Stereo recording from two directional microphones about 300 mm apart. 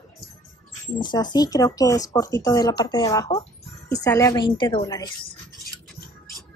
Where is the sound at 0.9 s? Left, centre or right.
Centre.